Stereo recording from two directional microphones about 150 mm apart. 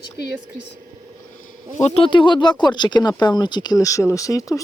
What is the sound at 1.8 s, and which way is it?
Speech, 40° left (ahead or behind).